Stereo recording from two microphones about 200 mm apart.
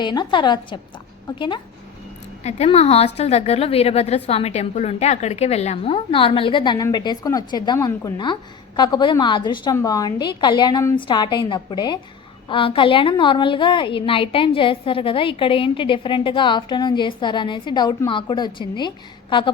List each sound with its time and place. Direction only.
0.0 s a woman's voice: 20° left (ahead or behind)